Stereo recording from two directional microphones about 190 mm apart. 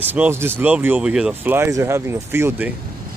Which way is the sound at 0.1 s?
10° right (ahead or behind).